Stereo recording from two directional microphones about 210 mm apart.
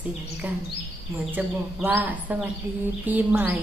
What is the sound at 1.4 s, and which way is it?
Speech, 10° right (ahead or behind).